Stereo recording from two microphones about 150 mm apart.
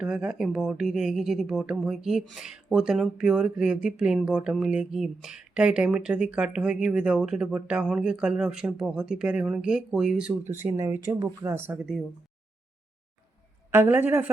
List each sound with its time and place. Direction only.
0.0 s speech: 5° right (ahead or behind)
10.6 s speech: 20° right (ahead or behind)
13.7 s speech: 15° right (ahead or behind)